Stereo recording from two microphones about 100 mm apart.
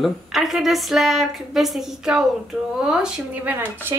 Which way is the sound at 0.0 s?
5° right (ahead or behind).